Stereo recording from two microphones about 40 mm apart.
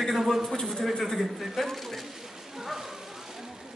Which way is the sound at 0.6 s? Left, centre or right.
Centre.